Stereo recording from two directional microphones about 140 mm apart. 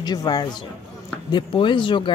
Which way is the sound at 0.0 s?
30° left (ahead or behind).